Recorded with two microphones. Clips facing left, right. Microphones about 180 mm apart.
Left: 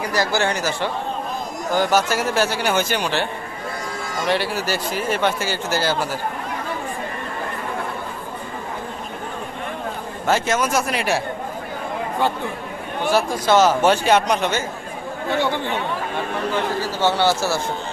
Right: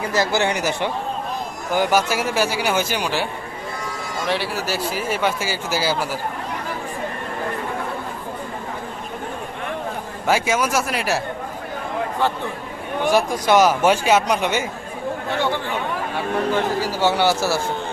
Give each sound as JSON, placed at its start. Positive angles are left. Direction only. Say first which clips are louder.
{"t": 0.0, "sound": "a man's voice", "louder": "right 1 dB", "side_deg": -20}
{"t": 4.3, "sound": "speech", "louder": "left 2 dB", "side_deg": 0}
{"t": 10.2, "sound": "speech", "louder": "even", "side_deg": -10}
{"t": 13.1, "sound": "a man's voice", "louder": "right 1 dB", "side_deg": -15}
{"t": 16.8, "sound": "a man's voice", "louder": "left 1 dB", "side_deg": -15}